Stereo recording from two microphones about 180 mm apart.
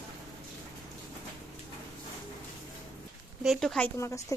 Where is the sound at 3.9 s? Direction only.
15° left (ahead or behind).